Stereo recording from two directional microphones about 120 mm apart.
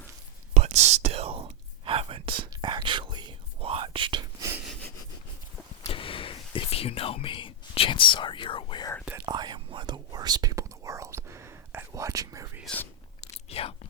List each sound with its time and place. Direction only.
0.5 s whispering: 65° right (ahead or behind); by 4.2 s 45° right (ahead or behind)
5.9 s whispering: 45° left (ahead or behind)
9.2 s whispering: 35° right (ahead or behind)
12.6 s whispering: 15° left (ahead or behind)
13.3 s chewing: 55° left (ahead or behind)